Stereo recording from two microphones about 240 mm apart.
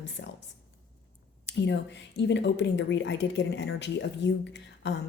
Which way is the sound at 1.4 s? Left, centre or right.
Left.